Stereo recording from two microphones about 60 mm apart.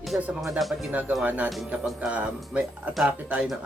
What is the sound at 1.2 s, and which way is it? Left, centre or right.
Speech, right.